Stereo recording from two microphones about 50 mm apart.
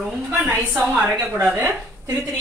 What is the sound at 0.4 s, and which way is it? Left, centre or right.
Speech, right.